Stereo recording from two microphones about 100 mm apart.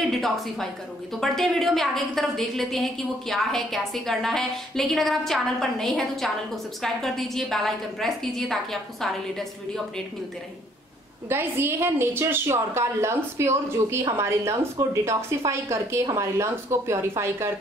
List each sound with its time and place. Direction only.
0.1 s a woman's voice: 5° left (ahead or behind)
11.2 s a woman's voice: 25° right (ahead or behind)